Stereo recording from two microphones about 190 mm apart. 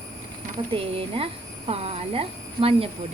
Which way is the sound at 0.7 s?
30° right (ahead or behind).